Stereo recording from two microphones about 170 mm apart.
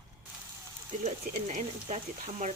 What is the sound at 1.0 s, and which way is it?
Speech, 45° right (ahead or behind).